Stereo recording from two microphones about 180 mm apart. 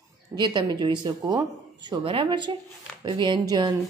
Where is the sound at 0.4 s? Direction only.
25° right (ahead or behind).